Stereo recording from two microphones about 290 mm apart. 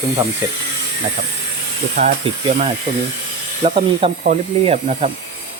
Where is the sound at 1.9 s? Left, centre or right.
Right.